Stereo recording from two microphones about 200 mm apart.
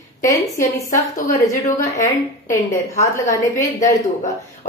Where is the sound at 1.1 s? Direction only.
40° left (ahead or behind).